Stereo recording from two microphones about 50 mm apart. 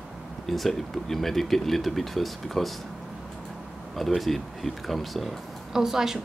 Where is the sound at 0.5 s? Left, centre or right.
Centre.